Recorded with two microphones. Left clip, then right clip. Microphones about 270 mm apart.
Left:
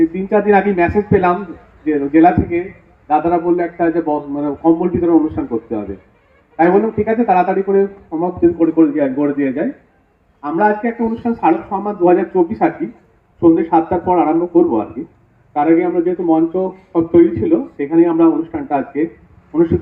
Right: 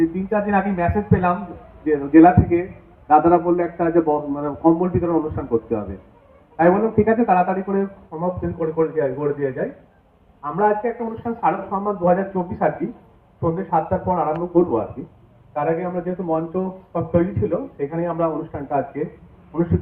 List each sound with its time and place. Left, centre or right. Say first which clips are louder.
0.3 s a man's voice: left 8 dB; left
13.4 s a man's voice: left 9 dB; left